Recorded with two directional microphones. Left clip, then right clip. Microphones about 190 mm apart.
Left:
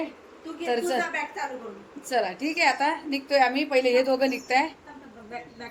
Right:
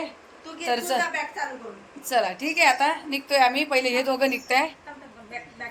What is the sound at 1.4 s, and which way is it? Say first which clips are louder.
Speech: right 2 dB; 10° left (ahead or behind).